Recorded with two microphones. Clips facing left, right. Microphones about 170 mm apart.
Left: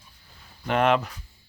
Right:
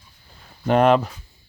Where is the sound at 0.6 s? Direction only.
35° right (ahead or behind).